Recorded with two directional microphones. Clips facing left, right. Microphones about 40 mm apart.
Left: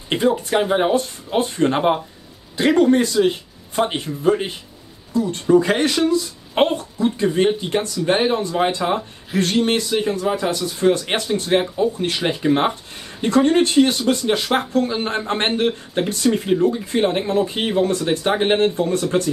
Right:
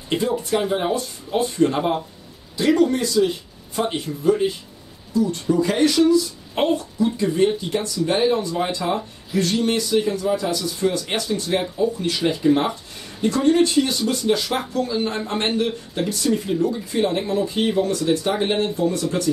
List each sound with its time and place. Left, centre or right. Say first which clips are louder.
0.1 s speech: left 3 dB; left